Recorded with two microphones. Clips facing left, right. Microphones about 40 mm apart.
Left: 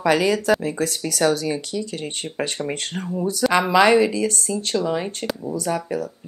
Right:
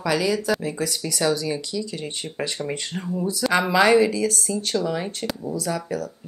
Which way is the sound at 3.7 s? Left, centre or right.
Left.